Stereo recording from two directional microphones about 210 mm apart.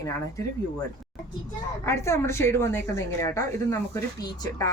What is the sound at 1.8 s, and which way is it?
A woman's voice, 15° left (ahead or behind).